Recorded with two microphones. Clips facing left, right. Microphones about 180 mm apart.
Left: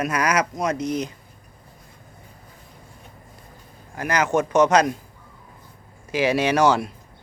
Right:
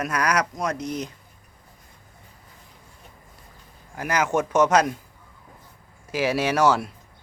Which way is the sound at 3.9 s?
5° right (ahead or behind).